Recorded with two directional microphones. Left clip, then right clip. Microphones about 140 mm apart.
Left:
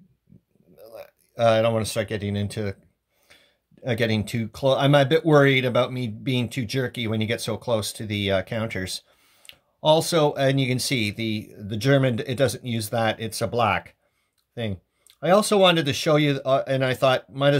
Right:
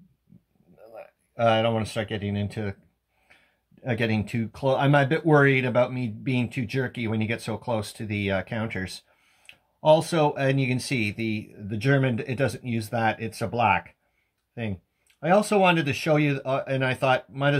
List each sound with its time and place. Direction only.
0.8 s speech: 35° left (ahead or behind)